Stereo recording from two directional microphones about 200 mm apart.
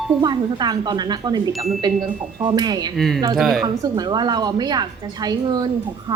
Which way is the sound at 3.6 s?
20° right (ahead or behind).